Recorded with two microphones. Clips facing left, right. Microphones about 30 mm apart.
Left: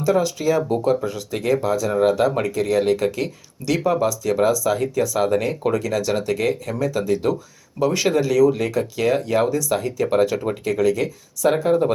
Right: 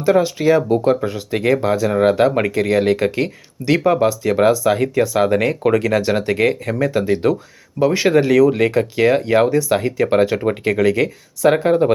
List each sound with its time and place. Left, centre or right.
0.0 s speech: right
1.9 s speech: right
2.3 s speech: right
7.8 s speech: centre
8.1 s speech: right
10.6 s speech: right